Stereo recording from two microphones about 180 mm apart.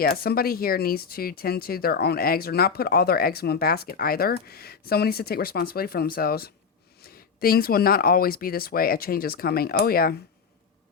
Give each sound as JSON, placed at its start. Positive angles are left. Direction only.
{"t": 0.0, "sound": "speech", "side_deg": 55}